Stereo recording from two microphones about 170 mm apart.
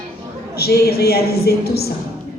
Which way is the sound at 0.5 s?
65° left (ahead or behind).